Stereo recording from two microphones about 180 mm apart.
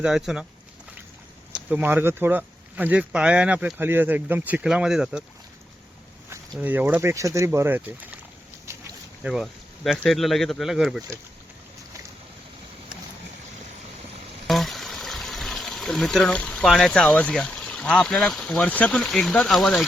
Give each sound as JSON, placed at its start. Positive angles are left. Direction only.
{"t": 0.0, "sound": "speech", "side_deg": -5}
{"t": 1.5, "sound": "speech", "side_deg": -10}
{"t": 6.3, "sound": "speech", "side_deg": -10}
{"t": 8.7, "sound": "boat", "side_deg": -15}
{"t": 9.2, "sound": "speech", "side_deg": 0}
{"t": 14.4, "sound": "speech", "side_deg": 0}